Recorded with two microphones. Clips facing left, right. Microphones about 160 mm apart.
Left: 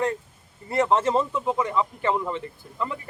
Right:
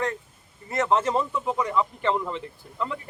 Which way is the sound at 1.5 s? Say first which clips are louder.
Left 1 dB; centre (ahead or behind).